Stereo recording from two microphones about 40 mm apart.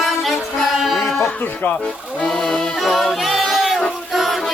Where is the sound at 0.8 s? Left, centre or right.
Centre.